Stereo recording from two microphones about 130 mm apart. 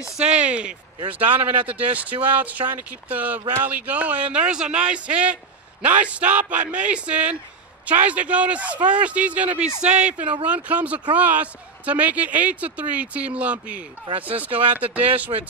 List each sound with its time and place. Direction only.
0.0 s speech: 10° right (ahead or behind)
2.6 s speech: 40° right (ahead or behind)
3.1 s speech: 15° right (ahead or behind)